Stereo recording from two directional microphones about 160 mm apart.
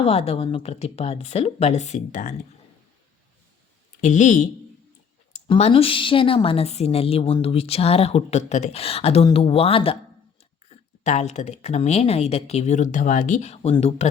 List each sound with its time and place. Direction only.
0.0 s a woman's voice: 40° left (ahead or behind)
4.0 s speech: 50° left (ahead or behind)
5.5 s a woman's voice: 35° left (ahead or behind)
10.7 s speech: 50° left (ahead or behind)